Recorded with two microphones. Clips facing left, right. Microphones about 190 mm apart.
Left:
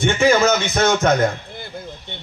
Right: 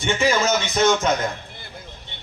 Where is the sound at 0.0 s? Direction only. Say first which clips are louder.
Left 5 dB; 55° left (ahead or behind).